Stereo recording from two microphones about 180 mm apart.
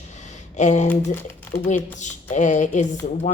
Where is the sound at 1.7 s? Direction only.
45° left (ahead or behind).